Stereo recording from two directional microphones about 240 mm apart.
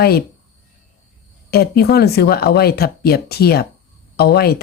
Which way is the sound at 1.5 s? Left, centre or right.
Left.